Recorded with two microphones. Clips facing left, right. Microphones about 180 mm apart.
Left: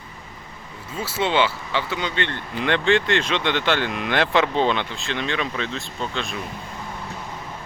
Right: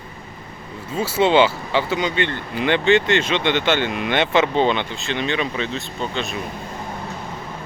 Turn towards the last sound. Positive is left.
turn(degrees=0)  # may be behind; listen again after turning